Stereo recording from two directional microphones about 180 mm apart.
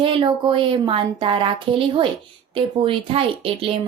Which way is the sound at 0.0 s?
30° right (ahead or behind).